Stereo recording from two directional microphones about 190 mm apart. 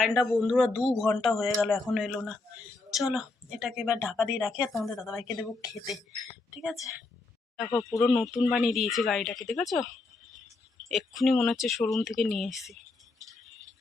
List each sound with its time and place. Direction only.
0.0 s speech: 5° right (ahead or behind)
6.5 s speech: 5° right (ahead or behind)
7.7 s speech: 15° left (ahead or behind)
7.9 s speech: centre (ahead or behind)